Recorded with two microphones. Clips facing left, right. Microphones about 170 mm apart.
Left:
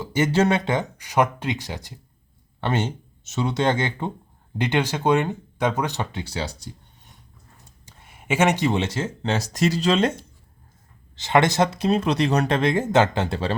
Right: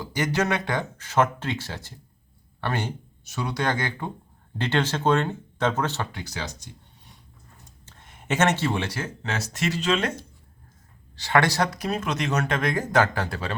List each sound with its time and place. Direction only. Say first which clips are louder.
0.0 s speech: left 5 dB; 25° left (ahead or behind)
7.9 s speech: left 2 dB; 10° left (ahead or behind); by 13.6 s 30° left (ahead or behind)